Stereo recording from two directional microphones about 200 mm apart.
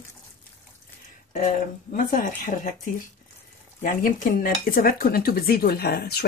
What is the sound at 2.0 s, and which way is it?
Speech, 40° left (ahead or behind).